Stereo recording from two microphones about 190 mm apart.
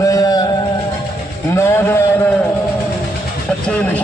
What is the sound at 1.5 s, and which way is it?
Speech, 15° left (ahead or behind).